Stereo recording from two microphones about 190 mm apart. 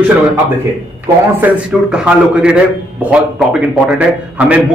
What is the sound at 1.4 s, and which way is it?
A man's voice, 5° right (ahead or behind).